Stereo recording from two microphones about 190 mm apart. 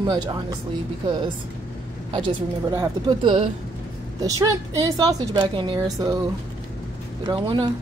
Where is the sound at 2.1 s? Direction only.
20° right (ahead or behind).